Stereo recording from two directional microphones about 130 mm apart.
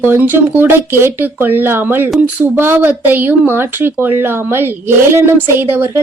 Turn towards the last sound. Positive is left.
turn(degrees=-15)  # may be behind; listen again after turning